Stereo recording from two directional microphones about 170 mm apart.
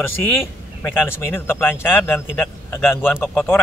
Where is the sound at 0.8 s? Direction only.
10° left (ahead or behind).